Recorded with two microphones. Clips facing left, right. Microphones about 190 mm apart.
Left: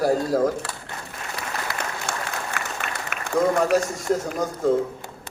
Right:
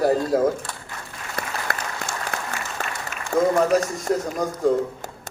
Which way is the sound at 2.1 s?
60° left (ahead or behind).